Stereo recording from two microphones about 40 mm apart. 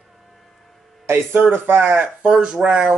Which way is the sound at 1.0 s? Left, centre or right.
Right.